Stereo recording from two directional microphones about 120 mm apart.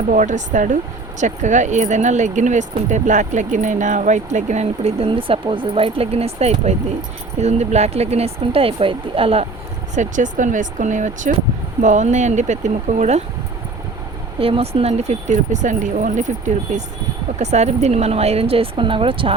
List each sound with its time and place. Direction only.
0.1 s speech: 90° right; by 9.5 s 50° right (ahead or behind)
9.9 s speech: 90° right; by 13.2 s 75° right (ahead or behind)
14.3 s speech: 50° right (ahead or behind); by 16.3 s 90° right
17.3 s speech: 70° right (ahead or behind); by 19.3 s 45° right (ahead or behind)